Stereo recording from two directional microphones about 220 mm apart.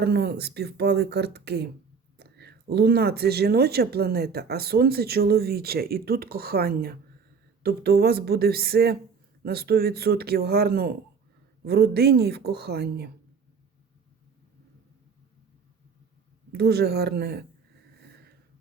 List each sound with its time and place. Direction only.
0.0 s speech: 50° right (ahead or behind)
16.5 s speech: 45° right (ahead or behind)
18.0 s snort: 45° right (ahead or behind)